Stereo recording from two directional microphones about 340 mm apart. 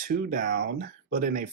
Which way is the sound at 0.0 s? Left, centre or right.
Right.